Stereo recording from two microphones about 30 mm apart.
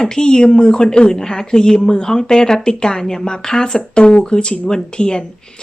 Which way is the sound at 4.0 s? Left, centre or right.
Left.